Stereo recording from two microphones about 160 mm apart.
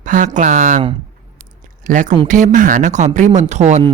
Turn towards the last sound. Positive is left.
turn(degrees=-45)  # may be behind; listen again after turning